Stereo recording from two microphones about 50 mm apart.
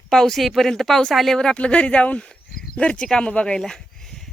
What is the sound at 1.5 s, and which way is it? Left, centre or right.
Speech, left.